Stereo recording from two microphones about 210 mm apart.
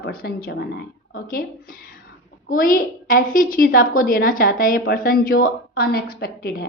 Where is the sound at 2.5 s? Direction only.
40° left (ahead or behind).